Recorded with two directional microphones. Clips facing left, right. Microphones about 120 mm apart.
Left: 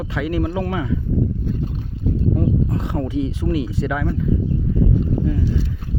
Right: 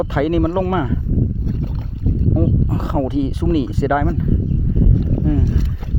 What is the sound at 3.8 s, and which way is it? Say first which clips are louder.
Speech: right 6 dB; 75° right (ahead or behind).